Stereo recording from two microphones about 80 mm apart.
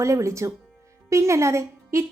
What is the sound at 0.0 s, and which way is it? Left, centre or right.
Speech, right.